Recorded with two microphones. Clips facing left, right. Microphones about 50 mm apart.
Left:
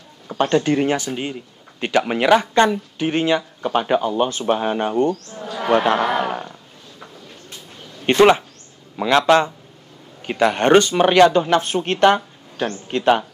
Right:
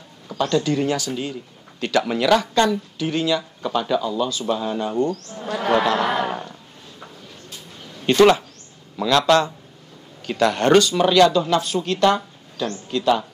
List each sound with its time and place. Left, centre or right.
0.3 s a man's voice: left
6.1 s roaring cats: centre
8.0 s a man's voice: left